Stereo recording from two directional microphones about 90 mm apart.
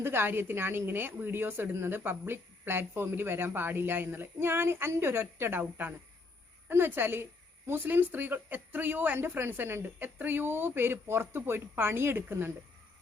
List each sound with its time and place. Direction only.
0.0 s a woman's voice: 25° right (ahead or behind)